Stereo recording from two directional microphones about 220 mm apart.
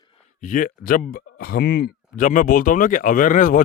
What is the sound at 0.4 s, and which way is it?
Speech, 40° left (ahead or behind).